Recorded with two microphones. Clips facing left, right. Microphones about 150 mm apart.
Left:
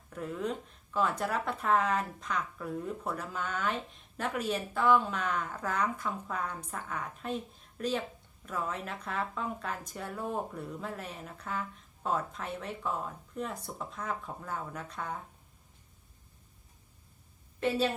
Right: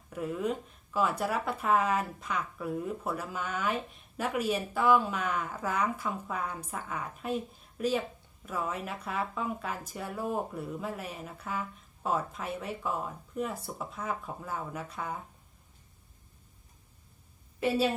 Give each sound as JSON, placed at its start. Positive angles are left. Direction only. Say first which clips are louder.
{"t": 0.1, "sound": "speech", "louder": "right 3 dB", "side_deg": -5}
{"t": 17.6, "sound": "speech", "louder": "right 2 dB", "side_deg": -10}